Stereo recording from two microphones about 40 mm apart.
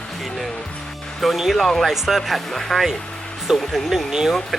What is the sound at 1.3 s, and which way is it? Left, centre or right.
Speech, centre.